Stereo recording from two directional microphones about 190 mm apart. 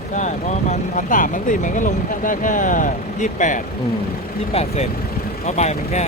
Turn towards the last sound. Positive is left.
turn(degrees=35)  # may be behind; listen again after turning